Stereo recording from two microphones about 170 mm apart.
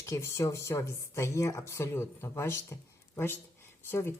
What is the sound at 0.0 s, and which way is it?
Speech, 15° left (ahead or behind).